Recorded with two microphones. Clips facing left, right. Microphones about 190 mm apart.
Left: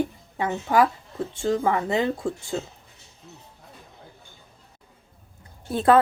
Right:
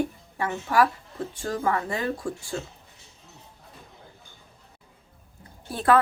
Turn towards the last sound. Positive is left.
turn(degrees=25)  # may be behind; listen again after turning